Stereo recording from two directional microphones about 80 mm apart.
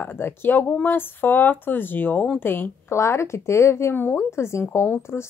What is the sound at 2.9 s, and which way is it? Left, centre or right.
Speech, left.